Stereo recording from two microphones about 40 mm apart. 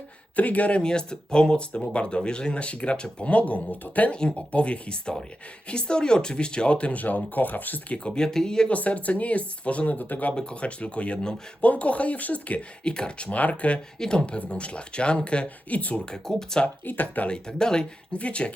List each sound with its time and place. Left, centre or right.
0.3 s speech: left
0.8 s speech: left
4.1 s speech: left
7.9 s speech: left
8.7 s speech: left
10.3 s speech: left
12.8 s speech: left
13.3 s speech: left
14.0 s speech: left
15.4 s speech: left
16.0 s speech: centre
16.8 s speech: left
17.2 s speech: left
18.2 s speech: left